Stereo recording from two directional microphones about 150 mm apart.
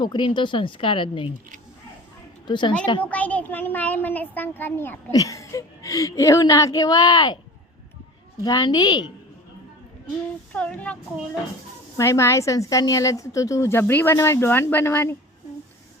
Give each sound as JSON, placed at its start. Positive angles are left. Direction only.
{"t": 0.0, "sound": "speech", "side_deg": 30}
{"t": 2.5, "sound": "speech", "side_deg": 30}
{"t": 3.0, "sound": "a child's voice", "side_deg": 10}
{"t": 5.1, "sound": "a woman's voice", "side_deg": 25}
{"t": 8.4, "sound": "a woman's voice", "side_deg": 25}
{"t": 10.5, "sound": "a child's voice", "side_deg": 10}
{"t": 11.9, "sound": "a woman's voice", "side_deg": 20}